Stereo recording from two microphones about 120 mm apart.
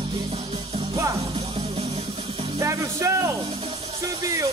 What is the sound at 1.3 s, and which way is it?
Music, 50° right (ahead or behind).